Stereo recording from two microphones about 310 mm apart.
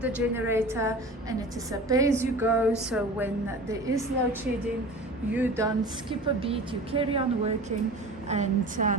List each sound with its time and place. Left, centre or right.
0.0 s a woman's voice: centre
5.3 s a woman's voice: centre; by 9.0 s right